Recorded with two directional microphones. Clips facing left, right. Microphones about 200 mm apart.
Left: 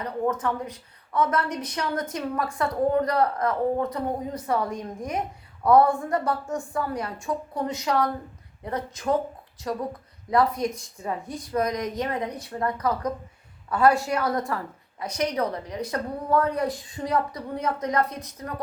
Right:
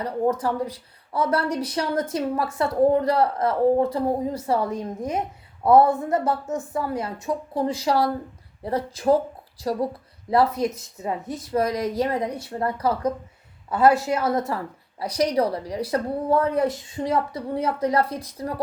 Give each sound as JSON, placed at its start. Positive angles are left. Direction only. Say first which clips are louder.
{"t": 0.4, "sound": "a woman's voice", "louder": "right 3 dB", "side_deg": -35}
{"t": 10.2, "sound": "a woman's voice", "louder": "right 2 dB", "side_deg": -25}